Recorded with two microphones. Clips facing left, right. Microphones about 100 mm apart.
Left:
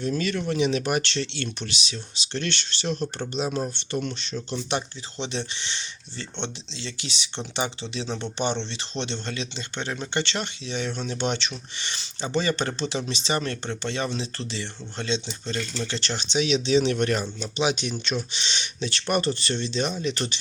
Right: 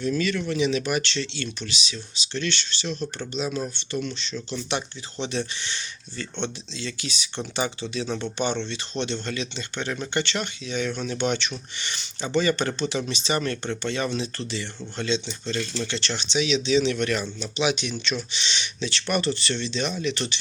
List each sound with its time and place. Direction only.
0.0 s speech: 45° left (ahead or behind)
5.1 s speech: 25° left (ahead or behind); by 20.4 s 40° left (ahead or behind)